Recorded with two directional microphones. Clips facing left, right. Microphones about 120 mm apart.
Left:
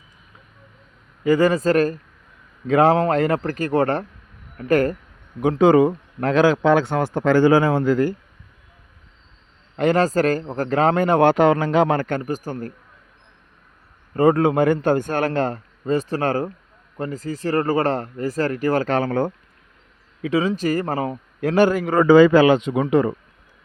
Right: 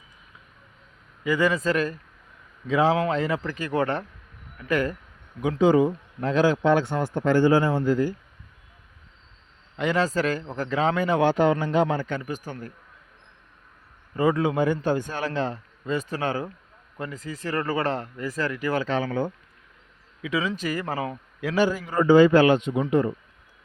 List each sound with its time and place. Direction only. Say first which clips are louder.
1.2 s speech: left 6 dB; 40° left (ahead or behind)
2.6 s a man's voice: left 6 dB; 55° left (ahead or behind)
5.4 s speech: left 5 dB; 60° left (ahead or behind); by 8.1 s 80° left
9.7 s a man's voice: left 6 dB; 45° left (ahead or behind)
12.2 s speech: left 7 dB; 40° left (ahead or behind)
14.1 s a man's voice: left 6 dB; 50° left (ahead or behind)
20.2 s speech: left 7 dB; 35° left (ahead or behind)
21.5 s speech: left 6 dB; 60° left (ahead or behind); by 23.1 s 90° left